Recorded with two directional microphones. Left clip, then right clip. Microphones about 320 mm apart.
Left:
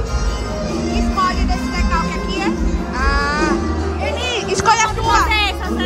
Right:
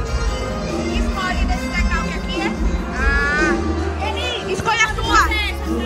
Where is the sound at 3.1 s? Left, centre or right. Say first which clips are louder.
Right 1 dB; centre.